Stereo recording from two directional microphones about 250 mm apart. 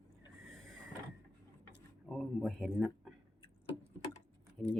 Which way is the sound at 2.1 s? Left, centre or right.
Centre.